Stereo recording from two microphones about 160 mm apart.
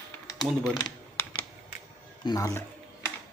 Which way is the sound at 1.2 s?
15° left (ahead or behind).